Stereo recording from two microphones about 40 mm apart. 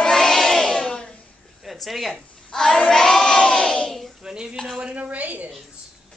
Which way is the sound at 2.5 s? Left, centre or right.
Centre.